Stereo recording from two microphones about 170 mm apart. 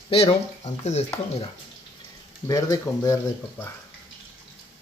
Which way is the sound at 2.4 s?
20° left (ahead or behind).